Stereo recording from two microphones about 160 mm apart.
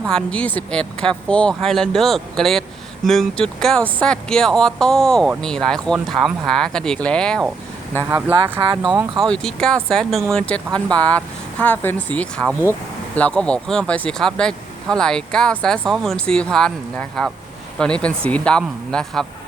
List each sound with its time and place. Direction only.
0.0 s speech: 5° left (ahead or behind)
8.6 s speech: 30° right (ahead or behind)
9.2 s speech: 5° left (ahead or behind)